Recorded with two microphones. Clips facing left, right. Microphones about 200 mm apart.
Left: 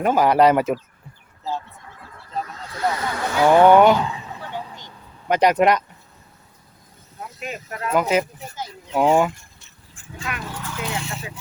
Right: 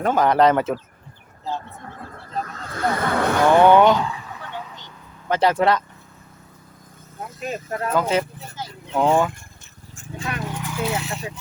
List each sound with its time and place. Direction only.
0.0 s speech: 10° left (ahead or behind)
1.8 s vehicle: 55° right (ahead or behind)
3.6 s speech: 10° left (ahead or behind)
4.1 s a sound: 25° left (ahead or behind)
5.3 s speech: 15° left (ahead or behind)
7.5 s speech: 30° right (ahead or behind)
7.9 s speech: 10° left (ahead or behind)
9.9 s horse: 40° right (ahead or behind)
10.3 s horse: 20° right (ahead or behind)
10.8 s a sound: centre (ahead or behind)